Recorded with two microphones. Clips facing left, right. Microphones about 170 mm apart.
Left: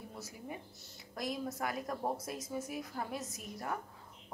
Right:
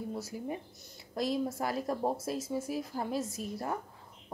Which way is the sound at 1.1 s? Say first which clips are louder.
Right 7 dB; 30° right (ahead or behind).